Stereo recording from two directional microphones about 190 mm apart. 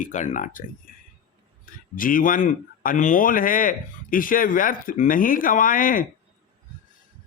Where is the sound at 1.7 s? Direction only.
45° left (ahead or behind).